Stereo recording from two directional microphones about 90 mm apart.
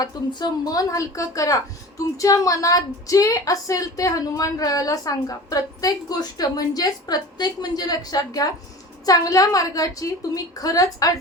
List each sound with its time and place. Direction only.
0.0 s a woman's voice: 50° left (ahead or behind)